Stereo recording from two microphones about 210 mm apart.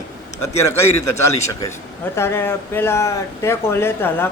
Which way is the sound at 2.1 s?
10° left (ahead or behind).